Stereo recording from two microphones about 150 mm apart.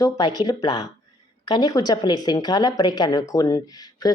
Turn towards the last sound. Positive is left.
turn(degrees=25)  # may be behind; listen again after turning